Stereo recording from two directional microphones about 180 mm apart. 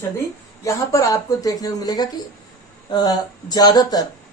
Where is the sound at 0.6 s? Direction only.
20° left (ahead or behind).